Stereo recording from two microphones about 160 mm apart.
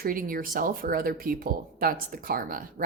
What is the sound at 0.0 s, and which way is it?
A woman's voice, 60° right (ahead or behind).